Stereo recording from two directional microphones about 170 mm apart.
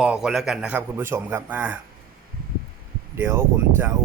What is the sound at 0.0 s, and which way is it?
Speech, 5° right (ahead or behind).